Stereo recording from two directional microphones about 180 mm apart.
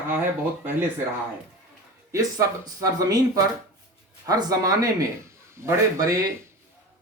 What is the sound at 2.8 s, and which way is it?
Speech, 20° right (ahead or behind).